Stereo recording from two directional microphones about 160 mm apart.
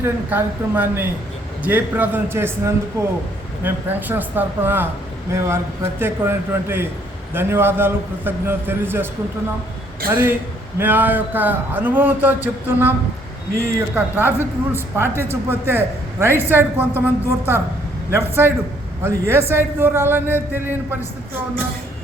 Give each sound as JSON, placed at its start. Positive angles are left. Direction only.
{"t": 0.0, "sound": "a man's voice", "side_deg": -10}
{"t": 10.1, "sound": "a man's voice", "side_deg": -10}
{"t": 18.1, "sound": "a man's voice", "side_deg": -15}